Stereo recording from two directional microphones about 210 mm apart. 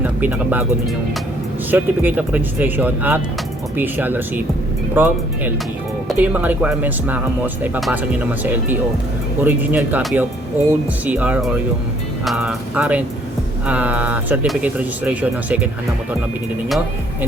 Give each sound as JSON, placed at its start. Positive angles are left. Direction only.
{"t": 0.0, "sound": "speech", "side_deg": -10}
{"t": 1.7, "sound": "speech", "side_deg": -10}